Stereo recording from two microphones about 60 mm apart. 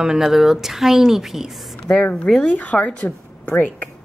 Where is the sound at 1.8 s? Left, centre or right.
Centre.